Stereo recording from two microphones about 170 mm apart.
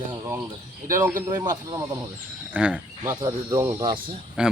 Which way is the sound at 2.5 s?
5° right (ahead or behind).